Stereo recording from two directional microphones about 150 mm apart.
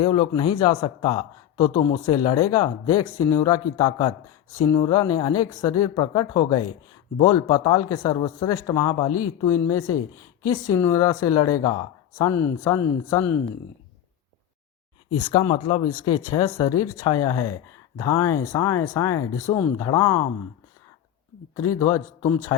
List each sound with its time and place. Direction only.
0.0 s a man's voice: 30° left (ahead or behind)
15.2 s speech: 30° left (ahead or behind)
16.0 s a man's voice: 25° left (ahead or behind)
21.5 s a man's voice: 20° left (ahead or behind)